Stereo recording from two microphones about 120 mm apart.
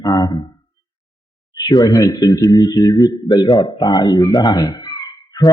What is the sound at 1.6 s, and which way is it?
A man's voice, 35° left (ahead or behind).